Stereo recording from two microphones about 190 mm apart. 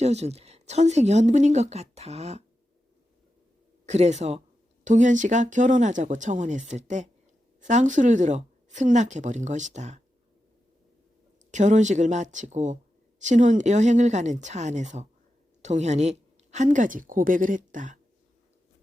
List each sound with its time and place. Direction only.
0.0 s a woman's voice: 35° right (ahead or behind)
3.8 s a woman's voice: 35° right (ahead or behind)
11.5 s a woman's voice: 40° right (ahead or behind)